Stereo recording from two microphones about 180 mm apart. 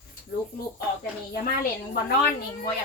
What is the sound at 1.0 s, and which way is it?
Speech, 55° left (ahead or behind).